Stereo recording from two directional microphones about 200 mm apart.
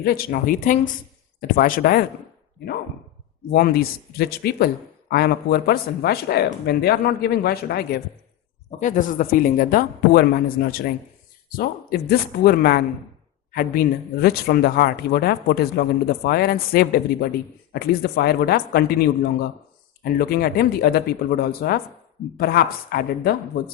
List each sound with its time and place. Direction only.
0.0 s speech: 45° left (ahead or behind)
3.5 s speech: 50° left (ahead or behind)
8.8 s speech: 40° left (ahead or behind)